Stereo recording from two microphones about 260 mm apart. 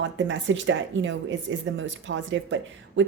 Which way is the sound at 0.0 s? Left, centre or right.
Right.